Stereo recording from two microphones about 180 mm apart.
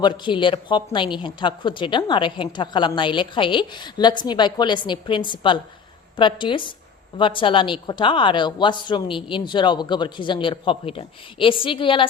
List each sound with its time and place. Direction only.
0.0 s a woman's voice: 25° left (ahead or behind)